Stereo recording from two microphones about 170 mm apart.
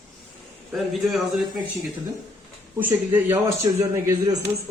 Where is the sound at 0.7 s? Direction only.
Centre (ahead or behind).